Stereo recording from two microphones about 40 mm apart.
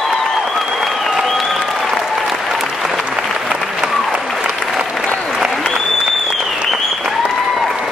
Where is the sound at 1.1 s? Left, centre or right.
Centre.